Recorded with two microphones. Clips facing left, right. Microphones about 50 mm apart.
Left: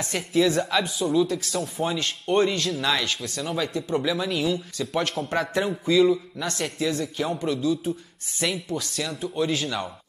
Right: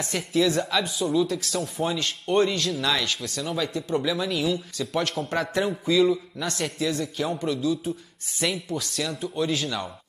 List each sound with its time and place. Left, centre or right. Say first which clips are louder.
0.0 s a man's voice: left 1 dB; centre